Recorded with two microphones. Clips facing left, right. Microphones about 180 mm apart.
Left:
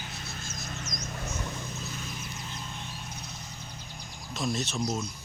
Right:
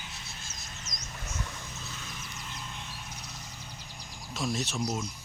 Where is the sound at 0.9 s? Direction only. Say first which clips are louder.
Left 4 dB; 50° left (ahead or behind).